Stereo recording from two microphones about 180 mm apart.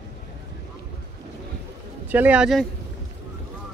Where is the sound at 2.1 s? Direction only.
10° right (ahead or behind).